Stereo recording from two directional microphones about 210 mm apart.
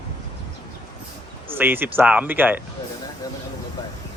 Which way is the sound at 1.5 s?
10° right (ahead or behind).